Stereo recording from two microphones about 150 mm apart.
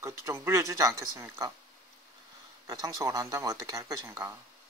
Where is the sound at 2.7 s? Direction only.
25° right (ahead or behind).